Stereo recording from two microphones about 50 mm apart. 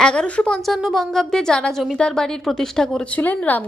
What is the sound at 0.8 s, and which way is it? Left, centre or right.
A woman's voice, centre.